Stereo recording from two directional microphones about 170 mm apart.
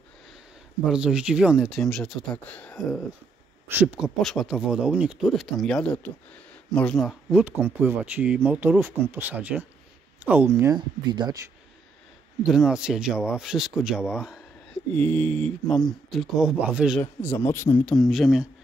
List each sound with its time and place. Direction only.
0.8 s speech: 5° right (ahead or behind)
3.7 s speech: 10° right (ahead or behind); by 11.5 s 25° right (ahead or behind)
12.4 s speech: centre (ahead or behind)
15.0 s speech: 10° left (ahead or behind)
17.0 s speech: 15° left (ahead or behind); by 18.5 s 5° right (ahead or behind)